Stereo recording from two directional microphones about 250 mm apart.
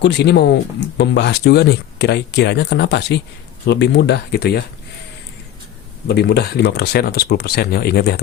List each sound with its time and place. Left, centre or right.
0.0 s speech: left
6.1 s speech: left